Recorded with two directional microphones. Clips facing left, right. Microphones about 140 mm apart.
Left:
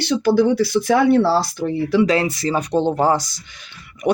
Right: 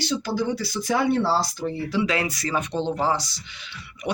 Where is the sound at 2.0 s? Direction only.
30° left (ahead or behind).